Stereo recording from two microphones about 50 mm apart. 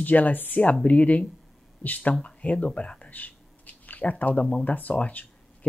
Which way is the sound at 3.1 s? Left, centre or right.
Left.